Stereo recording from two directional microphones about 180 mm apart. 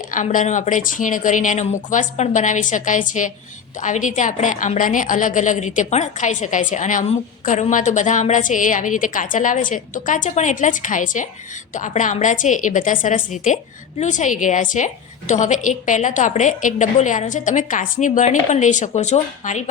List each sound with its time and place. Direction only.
0.1 s a woman's voice: 45° left (ahead or behind)